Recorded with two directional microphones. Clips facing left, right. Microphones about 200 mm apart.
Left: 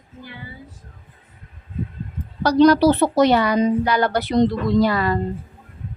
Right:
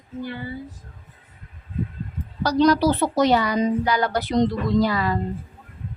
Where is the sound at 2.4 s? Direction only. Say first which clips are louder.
Left 4 dB; 60° left (ahead or behind).